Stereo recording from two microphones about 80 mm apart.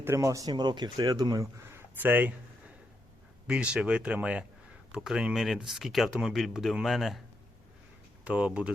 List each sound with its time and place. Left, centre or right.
0.0 s speech: right
0.5 s speech: right
1.7 s a sound: right
3.4 s speech: centre
8.2 s speech: centre